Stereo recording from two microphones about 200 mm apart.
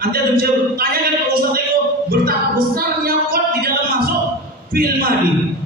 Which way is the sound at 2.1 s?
50° right (ahead or behind).